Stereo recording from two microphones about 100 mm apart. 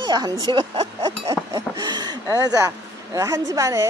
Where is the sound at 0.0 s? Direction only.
45° right (ahead or behind).